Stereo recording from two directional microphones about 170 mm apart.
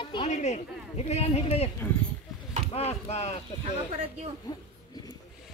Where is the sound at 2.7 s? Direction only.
35° left (ahead or behind).